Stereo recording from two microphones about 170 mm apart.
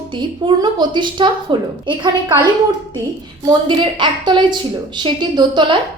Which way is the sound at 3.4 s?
25° right (ahead or behind).